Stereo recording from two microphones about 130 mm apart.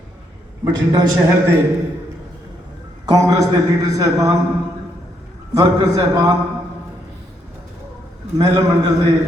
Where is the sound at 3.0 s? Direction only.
30° right (ahead or behind).